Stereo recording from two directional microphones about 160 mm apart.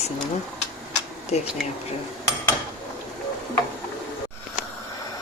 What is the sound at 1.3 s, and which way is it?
Speech, 40° left (ahead or behind).